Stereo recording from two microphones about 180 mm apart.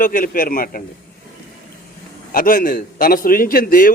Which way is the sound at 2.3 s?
50° left (ahead or behind).